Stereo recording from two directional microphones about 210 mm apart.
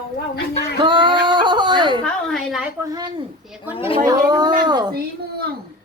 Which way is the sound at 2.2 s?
Centre (ahead or behind).